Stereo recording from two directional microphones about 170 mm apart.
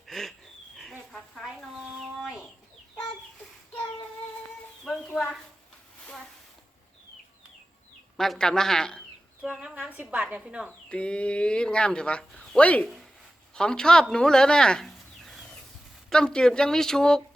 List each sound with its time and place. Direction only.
0.1 s a sound: centre (ahead or behind)
2.0 s livestock: centre (ahead or behind)
4.9 s a sound: 5° left (ahead or behind)
8.1 s speech: centre (ahead or behind)
9.8 s a woman's voice: 10° right (ahead or behind)
10.7 s speech: 5° left (ahead or behind)